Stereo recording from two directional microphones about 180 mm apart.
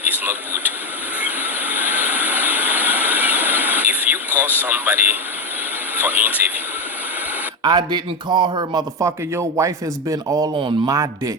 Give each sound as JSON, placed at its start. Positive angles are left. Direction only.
{"t": 0.0, "sound": "speech", "side_deg": -10}
{"t": 1.2, "sound": "vehicle", "side_deg": -10}
{"t": 6.0, "sound": "speech", "side_deg": -10}
{"t": 7.6, "sound": "speech", "side_deg": -25}